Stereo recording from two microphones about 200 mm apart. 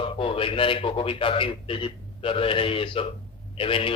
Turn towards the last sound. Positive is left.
turn(degrees=25)  # may be behind; listen again after turning